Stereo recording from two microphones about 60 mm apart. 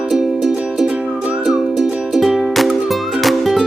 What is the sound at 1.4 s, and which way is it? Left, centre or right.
Music, centre.